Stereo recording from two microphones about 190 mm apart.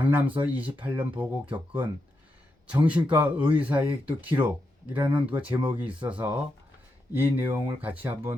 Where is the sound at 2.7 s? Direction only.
5° right (ahead or behind).